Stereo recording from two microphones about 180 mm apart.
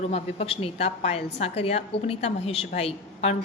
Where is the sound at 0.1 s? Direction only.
35° left (ahead or behind).